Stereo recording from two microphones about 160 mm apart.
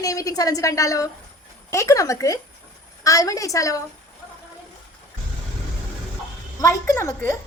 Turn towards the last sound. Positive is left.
turn(degrees=15)  # may be behind; listen again after turning